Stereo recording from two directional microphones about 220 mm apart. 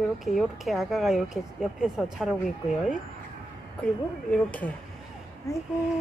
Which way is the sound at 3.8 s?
5° left (ahead or behind).